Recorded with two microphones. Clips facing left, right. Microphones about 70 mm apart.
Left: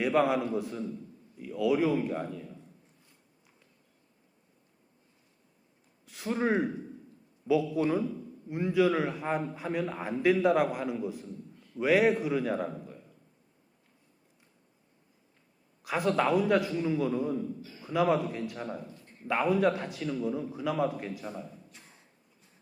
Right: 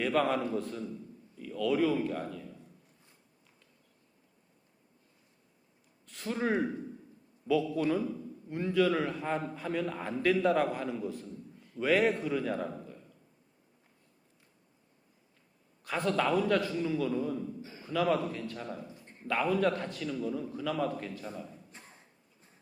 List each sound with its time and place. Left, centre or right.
0.0 s a man's voice: centre
6.1 s a man's voice: centre
15.8 s a man's voice: centre
17.6 s a sound: right
17.8 s a man's voice: centre